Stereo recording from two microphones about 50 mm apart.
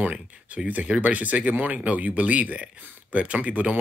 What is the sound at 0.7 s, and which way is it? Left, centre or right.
Speech, right.